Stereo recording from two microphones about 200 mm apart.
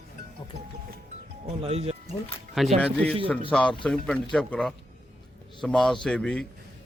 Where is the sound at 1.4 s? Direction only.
30° right (ahead or behind).